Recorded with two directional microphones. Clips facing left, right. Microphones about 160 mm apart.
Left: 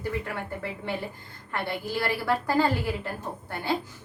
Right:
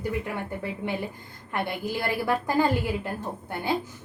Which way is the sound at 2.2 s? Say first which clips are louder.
Even; 15° right (ahead or behind).